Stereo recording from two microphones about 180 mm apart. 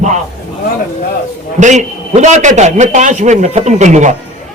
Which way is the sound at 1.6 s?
40° right (ahead or behind).